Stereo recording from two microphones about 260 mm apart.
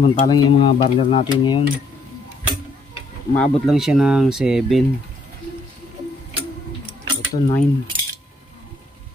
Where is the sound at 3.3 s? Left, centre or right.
Centre.